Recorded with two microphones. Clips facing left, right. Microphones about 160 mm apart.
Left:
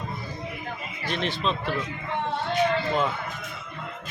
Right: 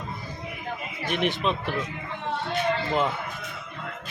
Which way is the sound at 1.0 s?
15° right (ahead or behind).